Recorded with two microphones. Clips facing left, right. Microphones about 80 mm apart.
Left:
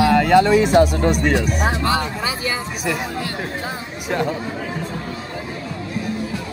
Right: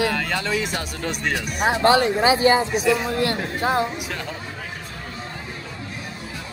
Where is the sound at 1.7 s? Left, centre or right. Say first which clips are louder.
Right 4 dB; right.